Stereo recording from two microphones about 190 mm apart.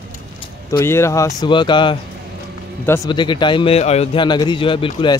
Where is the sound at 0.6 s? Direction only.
15° left (ahead or behind).